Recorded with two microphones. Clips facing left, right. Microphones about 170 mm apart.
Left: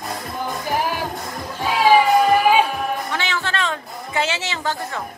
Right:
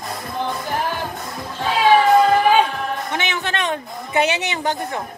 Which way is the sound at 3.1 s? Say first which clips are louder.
Right 1 dB; 20° right (ahead or behind).